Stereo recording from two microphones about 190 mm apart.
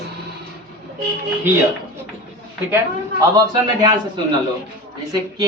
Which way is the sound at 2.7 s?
20° right (ahead or behind).